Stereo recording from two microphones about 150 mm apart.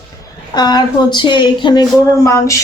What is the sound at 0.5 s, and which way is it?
Speech, 25° left (ahead or behind).